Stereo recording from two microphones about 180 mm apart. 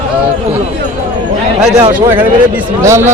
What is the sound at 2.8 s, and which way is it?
Speech, 15° right (ahead or behind).